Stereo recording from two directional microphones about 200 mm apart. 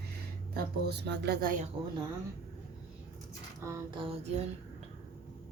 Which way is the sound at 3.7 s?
25° right (ahead or behind).